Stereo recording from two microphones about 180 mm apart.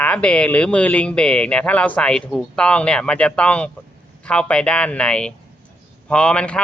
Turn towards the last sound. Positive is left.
turn(degrees=5)  # may be behind; listen again after turning